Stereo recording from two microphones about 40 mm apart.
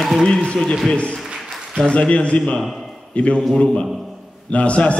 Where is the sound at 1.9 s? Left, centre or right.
Left.